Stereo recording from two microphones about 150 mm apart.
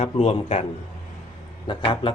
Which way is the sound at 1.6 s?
35° left (ahead or behind).